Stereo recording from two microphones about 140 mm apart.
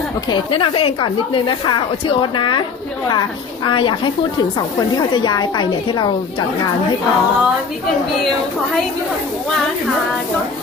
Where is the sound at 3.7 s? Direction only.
35° left (ahead or behind).